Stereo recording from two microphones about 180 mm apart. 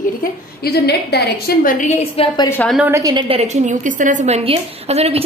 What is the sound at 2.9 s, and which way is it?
A woman's voice, 20° right (ahead or behind).